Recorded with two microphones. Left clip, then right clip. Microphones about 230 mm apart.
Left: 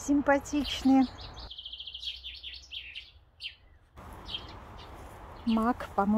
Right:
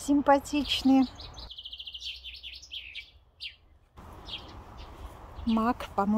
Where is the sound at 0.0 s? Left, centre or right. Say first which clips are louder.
Right 3 dB; centre.